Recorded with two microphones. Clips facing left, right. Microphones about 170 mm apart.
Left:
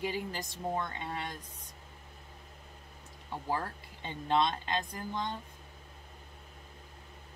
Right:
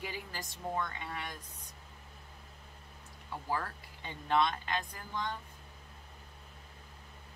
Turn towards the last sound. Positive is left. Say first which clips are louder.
# left 2 dB
turn(degrees=25)  # may be behind; listen again after turning